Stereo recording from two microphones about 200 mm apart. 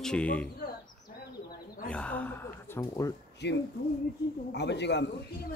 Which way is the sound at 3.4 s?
60° left (ahead or behind).